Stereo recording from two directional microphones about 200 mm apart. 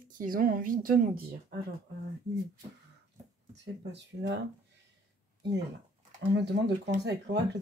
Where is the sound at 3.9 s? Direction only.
60° right (ahead or behind).